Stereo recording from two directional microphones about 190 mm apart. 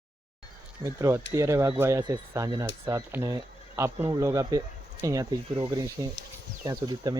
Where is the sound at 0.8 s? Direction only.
15° right (ahead or behind).